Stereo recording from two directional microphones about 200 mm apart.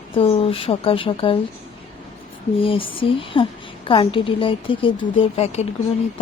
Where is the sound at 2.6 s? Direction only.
25° left (ahead or behind).